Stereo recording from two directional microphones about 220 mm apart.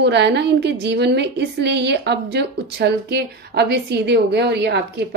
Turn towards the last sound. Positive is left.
turn(degrees=-50)  # may be behind; listen again after turning